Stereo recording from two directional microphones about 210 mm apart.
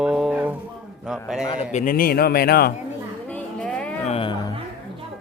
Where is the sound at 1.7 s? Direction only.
40° left (ahead or behind).